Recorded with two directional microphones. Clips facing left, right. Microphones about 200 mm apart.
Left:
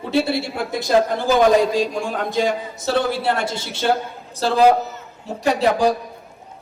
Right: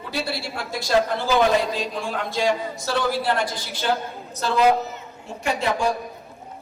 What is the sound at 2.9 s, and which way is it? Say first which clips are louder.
Speech: left 3 dB; 60° left (ahead or behind).